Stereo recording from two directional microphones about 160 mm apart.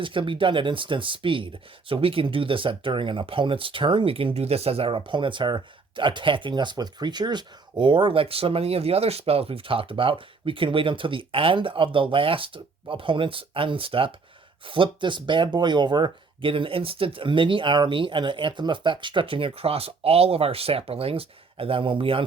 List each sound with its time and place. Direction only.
0.0 s speech: 30° right (ahead or behind)